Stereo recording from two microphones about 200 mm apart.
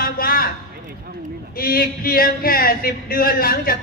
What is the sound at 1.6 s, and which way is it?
A man's voice, 50° left (ahead or behind).